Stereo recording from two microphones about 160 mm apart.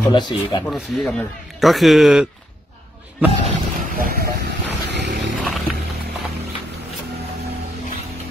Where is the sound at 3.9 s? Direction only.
65° right (ahead or behind).